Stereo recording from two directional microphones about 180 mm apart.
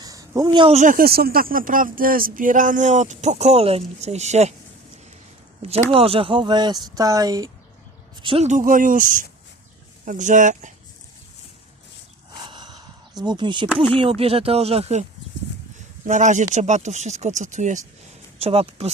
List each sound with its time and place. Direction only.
0.0 s a sound: 20° right (ahead or behind)
0.8 s speech: 50° right (ahead or behind)
5.9 s speech: 30° right (ahead or behind)
8.4 s speech: 45° right (ahead or behind)
12.5 s speech: 25° right (ahead or behind)
16.0 s speech: 45° right (ahead or behind)